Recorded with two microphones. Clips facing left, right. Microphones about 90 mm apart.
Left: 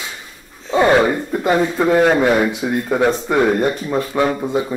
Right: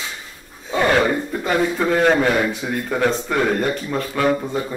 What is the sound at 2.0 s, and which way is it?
Speech, 5° left (ahead or behind).